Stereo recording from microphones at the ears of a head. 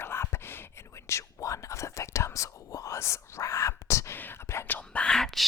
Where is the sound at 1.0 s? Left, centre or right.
Left.